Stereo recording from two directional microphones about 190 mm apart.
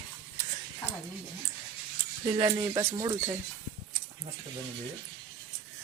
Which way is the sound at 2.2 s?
20° right (ahead or behind).